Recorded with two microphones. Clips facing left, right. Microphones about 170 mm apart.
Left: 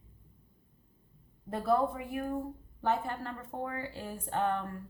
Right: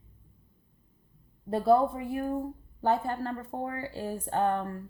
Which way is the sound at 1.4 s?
30° right (ahead or behind).